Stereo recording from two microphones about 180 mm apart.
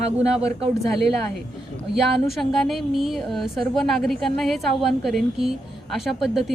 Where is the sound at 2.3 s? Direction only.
Centre (ahead or behind).